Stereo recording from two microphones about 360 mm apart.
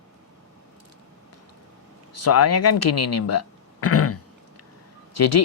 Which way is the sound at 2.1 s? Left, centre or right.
Left.